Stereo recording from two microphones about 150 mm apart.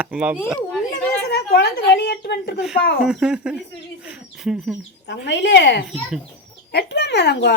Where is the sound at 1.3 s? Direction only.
90° left.